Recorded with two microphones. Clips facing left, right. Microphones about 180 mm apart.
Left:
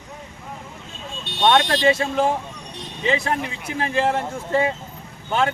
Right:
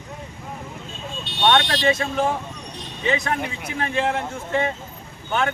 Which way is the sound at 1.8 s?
30° left (ahead or behind).